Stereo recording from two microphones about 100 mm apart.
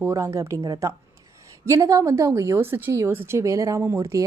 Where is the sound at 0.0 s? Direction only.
25° right (ahead or behind).